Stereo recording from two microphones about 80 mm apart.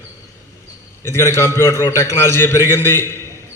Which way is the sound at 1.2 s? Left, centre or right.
Left.